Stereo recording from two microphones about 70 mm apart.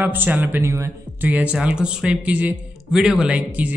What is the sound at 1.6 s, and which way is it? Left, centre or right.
Speech, centre.